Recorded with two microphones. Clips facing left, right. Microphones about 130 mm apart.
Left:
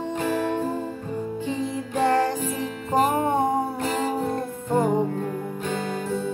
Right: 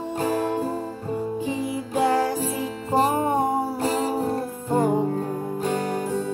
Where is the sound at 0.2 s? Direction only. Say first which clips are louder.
Right 2 dB; 40° right (ahead or behind).